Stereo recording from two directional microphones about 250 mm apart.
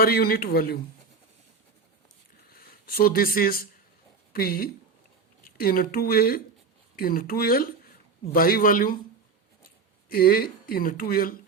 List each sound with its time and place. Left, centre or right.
0.0 s speech: left
2.5 s speech: left
10.1 s speech: left